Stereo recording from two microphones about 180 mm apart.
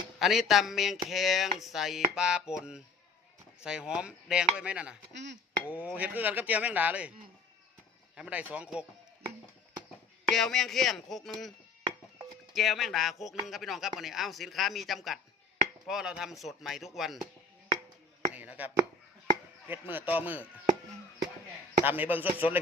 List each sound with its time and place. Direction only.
0.2 s speech: centre (ahead or behind)
5.1 s a sound: 80° right
5.6 s speech: 10° right (ahead or behind)
8.1 s speech: 5° right (ahead or behind)
10.2 s speech: centre (ahead or behind)
12.5 s speech: centre (ahead or behind)
18.3 s a sound: 10° right (ahead or behind)
19.6 s speech: 10° right (ahead or behind)
21.8 s speech: 10° right (ahead or behind)